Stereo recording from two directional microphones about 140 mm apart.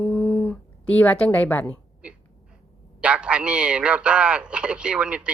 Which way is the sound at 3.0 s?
10° right (ahead or behind).